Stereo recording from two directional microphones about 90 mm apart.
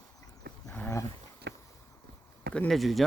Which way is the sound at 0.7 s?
25° left (ahead or behind).